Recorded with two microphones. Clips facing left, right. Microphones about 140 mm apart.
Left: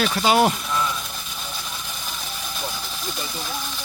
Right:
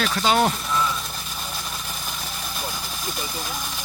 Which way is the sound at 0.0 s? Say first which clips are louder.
Left 2 dB; 5° left (ahead or behind).